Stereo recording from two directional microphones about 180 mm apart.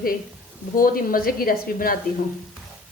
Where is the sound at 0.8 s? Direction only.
50° left (ahead or behind).